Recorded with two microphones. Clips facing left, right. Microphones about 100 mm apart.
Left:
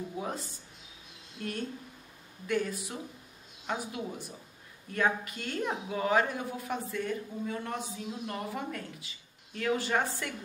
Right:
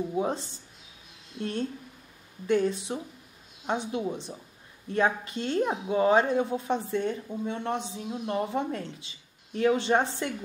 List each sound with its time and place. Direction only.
0.2 s speech: 25° right (ahead or behind)
2.4 s speech: 25° right (ahead or behind)